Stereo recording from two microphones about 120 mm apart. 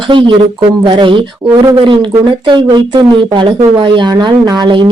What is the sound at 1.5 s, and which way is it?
Speech, 30° right (ahead or behind).